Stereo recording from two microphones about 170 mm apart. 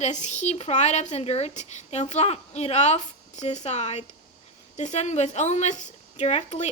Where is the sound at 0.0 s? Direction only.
45° left (ahead or behind).